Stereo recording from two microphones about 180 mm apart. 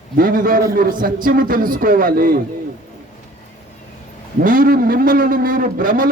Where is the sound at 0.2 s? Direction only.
50° right (ahead or behind).